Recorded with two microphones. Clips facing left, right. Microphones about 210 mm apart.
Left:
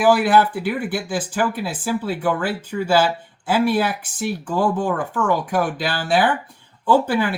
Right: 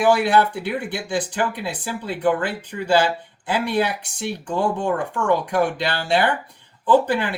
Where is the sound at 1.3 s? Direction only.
5° left (ahead or behind).